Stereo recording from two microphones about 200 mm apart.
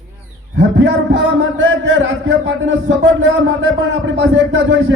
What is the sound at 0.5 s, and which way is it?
A man's voice, 60° right (ahead or behind).